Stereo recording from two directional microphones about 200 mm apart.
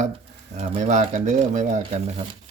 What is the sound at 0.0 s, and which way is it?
Speech, 35° right (ahead or behind).